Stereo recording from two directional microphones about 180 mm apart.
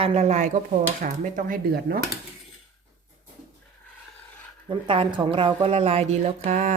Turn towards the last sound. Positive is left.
turn(degrees=-45)  # may be behind; listen again after turning